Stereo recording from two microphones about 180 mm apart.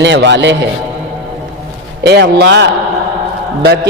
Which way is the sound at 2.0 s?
70° right (ahead or behind).